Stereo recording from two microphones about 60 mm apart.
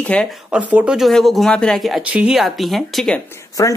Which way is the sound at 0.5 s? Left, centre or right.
Centre.